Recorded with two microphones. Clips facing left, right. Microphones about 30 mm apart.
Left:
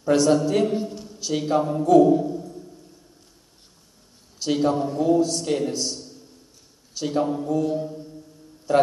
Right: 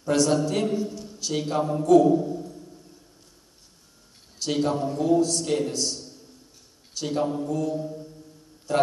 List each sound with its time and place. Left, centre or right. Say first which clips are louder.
0.0 s a man's voice: left 3 dB; centre
4.4 s a man's voice: left 3 dB; centre
7.6 s mantra: left 3 dB; centre
8.7 s a man's voice: left 4 dB; centre